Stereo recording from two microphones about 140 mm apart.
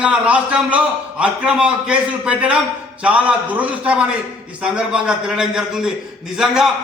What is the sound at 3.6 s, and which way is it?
A man's voice, 10° right (ahead or behind).